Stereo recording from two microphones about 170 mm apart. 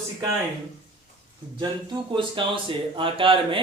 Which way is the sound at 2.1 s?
30° right (ahead or behind).